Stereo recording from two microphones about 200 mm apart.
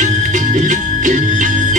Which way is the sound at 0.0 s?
40° right (ahead or behind).